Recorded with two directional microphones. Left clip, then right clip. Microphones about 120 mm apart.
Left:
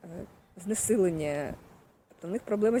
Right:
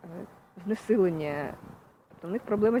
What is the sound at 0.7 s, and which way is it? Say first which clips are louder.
Speech: right 1 dB; 45° left (ahead or behind).